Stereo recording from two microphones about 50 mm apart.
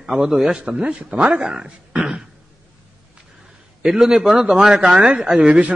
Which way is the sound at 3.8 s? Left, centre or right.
Centre.